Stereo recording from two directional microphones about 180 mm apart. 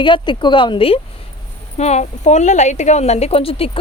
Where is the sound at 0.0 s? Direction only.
25° left (ahead or behind).